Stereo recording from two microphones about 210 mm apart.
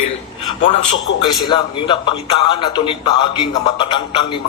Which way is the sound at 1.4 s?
25° left (ahead or behind).